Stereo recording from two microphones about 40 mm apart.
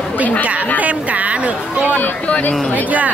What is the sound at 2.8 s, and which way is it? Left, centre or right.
Speech, right.